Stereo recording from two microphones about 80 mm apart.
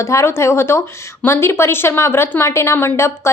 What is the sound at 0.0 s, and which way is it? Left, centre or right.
A woman's voice, left.